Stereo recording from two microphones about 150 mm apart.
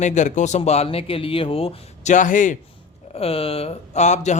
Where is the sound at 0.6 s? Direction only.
40° left (ahead or behind).